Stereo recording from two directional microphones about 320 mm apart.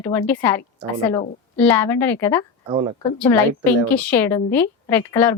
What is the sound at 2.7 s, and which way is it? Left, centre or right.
Speech, centre.